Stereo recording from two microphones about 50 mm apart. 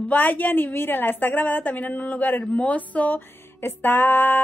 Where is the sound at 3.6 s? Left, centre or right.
Left.